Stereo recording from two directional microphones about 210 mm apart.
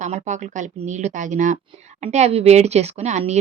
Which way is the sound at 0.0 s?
35° right (ahead or behind).